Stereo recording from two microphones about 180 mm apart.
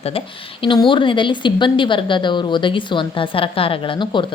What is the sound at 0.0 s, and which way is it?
A woman's voice, 30° left (ahead or behind).